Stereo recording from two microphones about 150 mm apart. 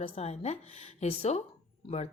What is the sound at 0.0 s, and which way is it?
Speech, 40° left (ahead or behind).